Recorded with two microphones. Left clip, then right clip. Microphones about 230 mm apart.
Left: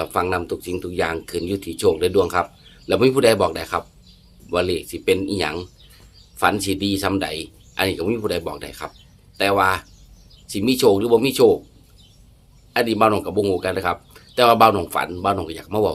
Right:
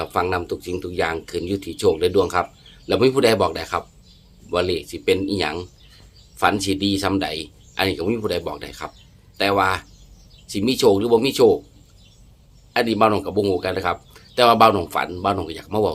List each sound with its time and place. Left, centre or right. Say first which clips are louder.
0.0 s speech: even; centre
12.7 s speech: even; centre